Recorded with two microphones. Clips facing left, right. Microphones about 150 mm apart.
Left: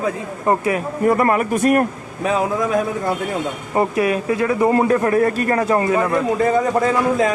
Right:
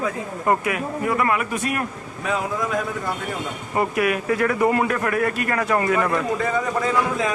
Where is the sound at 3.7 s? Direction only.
30° left (ahead or behind).